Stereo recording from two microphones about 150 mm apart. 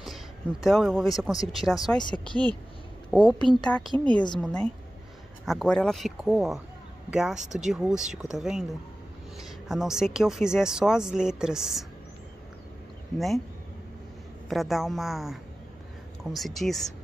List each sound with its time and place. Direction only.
0.0 s a sound: centre (ahead or behind)
1.1 s speech: centre (ahead or behind)
2.0 s speech: 30° left (ahead or behind)
2.2 s a woman's voice: 30° right (ahead or behind)
3.1 s a woman's voice: centre (ahead or behind)
14.5 s speech: centre (ahead or behind)